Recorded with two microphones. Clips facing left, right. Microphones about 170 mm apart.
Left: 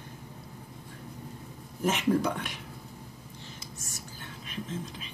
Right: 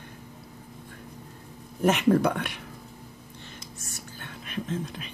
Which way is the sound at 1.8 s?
60° right (ahead or behind).